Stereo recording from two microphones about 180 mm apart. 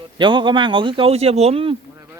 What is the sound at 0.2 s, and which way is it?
Speech, 25° right (ahead or behind).